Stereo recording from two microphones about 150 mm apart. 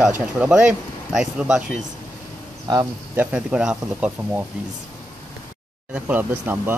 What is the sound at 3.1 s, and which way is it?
Speech, 10° right (ahead or behind).